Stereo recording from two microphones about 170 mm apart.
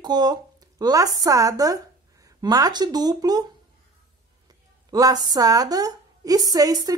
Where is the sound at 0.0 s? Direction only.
25° right (ahead or behind).